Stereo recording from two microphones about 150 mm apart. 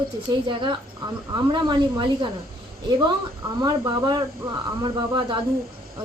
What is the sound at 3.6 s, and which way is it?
Speech, 25° right (ahead or behind).